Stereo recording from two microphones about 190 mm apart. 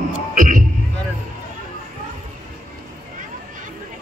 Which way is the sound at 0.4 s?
45° right (ahead or behind).